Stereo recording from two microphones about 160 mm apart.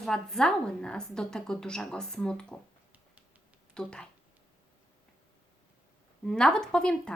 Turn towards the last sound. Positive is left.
turn(degrees=5)  # may be behind; listen again after turning